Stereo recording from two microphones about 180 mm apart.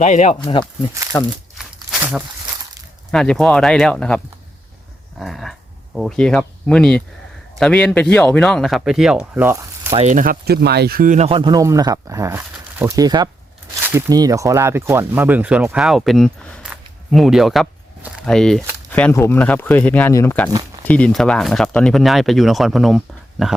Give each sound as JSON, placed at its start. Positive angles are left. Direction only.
{"t": 0.0, "sound": "speech", "side_deg": 40}
{"t": 0.3, "sound": "speech", "side_deg": 30}
{"t": 1.1, "sound": "speech", "side_deg": 15}
{"t": 1.5, "sound": "a sound", "side_deg": -5}
{"t": 3.1, "sound": "speech", "side_deg": 5}
{"t": 9.9, "sound": "speech", "side_deg": -40}
{"t": 11.3, "sound": "speech", "side_deg": -25}
{"t": 20.5, "sound": "a sound", "side_deg": -20}
{"t": 20.8, "sound": "speech", "side_deg": 5}